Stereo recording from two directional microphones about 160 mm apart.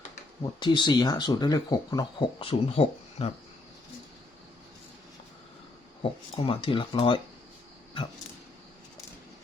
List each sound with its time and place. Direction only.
0.6 s speech: 30° left (ahead or behind)
6.0 s speech: 35° left (ahead or behind)